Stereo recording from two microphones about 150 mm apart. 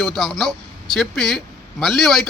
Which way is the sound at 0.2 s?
Centre (ahead or behind).